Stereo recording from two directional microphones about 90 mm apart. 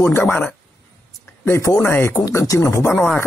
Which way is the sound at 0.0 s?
30° left (ahead or behind).